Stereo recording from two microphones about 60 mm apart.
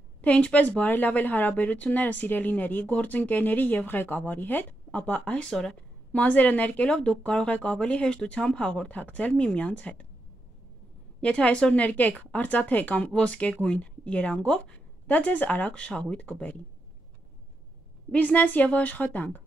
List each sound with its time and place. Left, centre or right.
0.2 s a woman's voice: left
5.5 s speech: centre
6.1 s a woman's voice: left
11.1 s a woman's voice: centre
18.1 s a woman's voice: left